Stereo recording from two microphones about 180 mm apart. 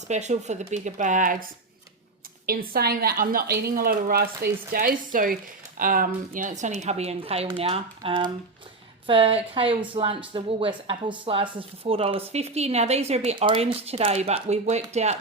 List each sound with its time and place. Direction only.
0.1 s speech: 40° right (ahead or behind)
2.5 s a woman's voice: 55° right (ahead or behind); by 15.1 s 40° right (ahead or behind)